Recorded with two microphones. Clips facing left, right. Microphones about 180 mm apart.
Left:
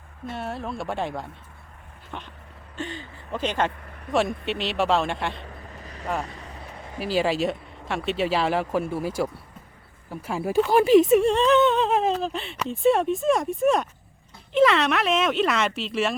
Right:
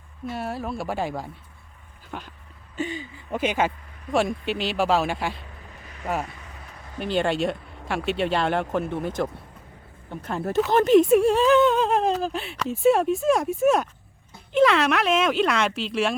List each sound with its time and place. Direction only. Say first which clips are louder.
0.3 s speech: right 2 dB; 5° right (ahead or behind)
5.8 s vehicle: right 1 dB; 40° left (ahead or behind)
7.0 s speech: even; 5° left (ahead or behind)